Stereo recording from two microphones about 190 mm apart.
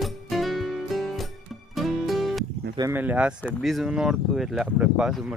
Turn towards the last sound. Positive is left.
turn(degrees=0)  # may be behind; listen again after turning